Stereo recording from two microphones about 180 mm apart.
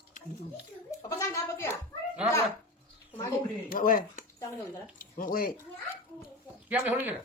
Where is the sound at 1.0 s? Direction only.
15° left (ahead or behind).